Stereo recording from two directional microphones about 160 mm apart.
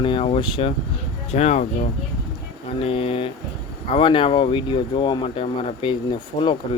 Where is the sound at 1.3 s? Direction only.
45° left (ahead or behind).